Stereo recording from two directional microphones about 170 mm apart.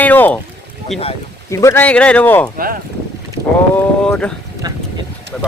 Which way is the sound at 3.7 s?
5° left (ahead or behind).